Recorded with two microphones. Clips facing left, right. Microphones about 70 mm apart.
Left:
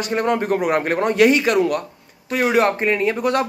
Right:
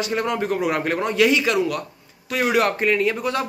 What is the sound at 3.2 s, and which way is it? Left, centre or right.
Speech, left.